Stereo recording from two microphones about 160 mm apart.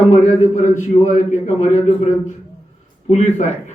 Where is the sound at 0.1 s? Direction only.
50° left (ahead or behind).